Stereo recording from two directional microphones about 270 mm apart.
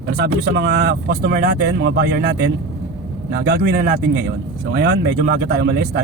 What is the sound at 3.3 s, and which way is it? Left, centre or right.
Speech, right.